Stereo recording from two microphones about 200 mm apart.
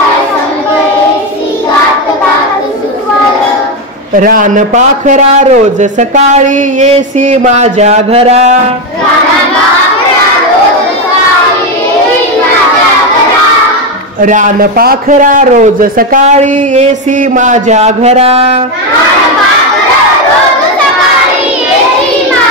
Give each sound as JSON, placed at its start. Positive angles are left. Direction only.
{"t": 4.1, "sound": "a man's voice", "side_deg": -45}
{"t": 14.2, "sound": "a man's voice", "side_deg": -40}